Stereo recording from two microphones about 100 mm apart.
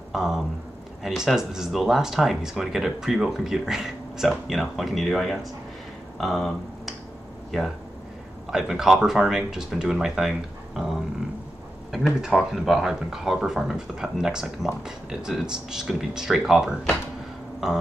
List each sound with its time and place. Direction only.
0.1 s speech: 5° right (ahead or behind)
6.1 s finger snapping: centre (ahead or behind)
8.5 s speech: 5° right (ahead or behind)